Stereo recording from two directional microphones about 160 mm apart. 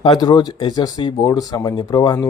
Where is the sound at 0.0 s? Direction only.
30° left (ahead or behind).